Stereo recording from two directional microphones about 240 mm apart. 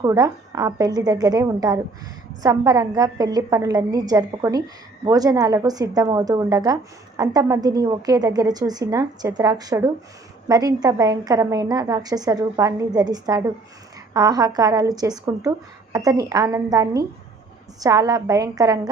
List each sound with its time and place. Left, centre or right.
0.0 s a woman's voice: centre